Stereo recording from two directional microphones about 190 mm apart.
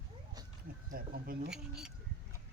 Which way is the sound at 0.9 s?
50° right (ahead or behind).